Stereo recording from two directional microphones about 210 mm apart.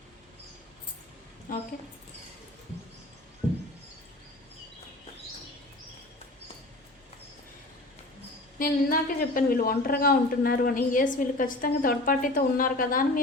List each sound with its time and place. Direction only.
1.5 s a woman's voice: 40° left (ahead or behind)
8.5 s speech: 40° left (ahead or behind)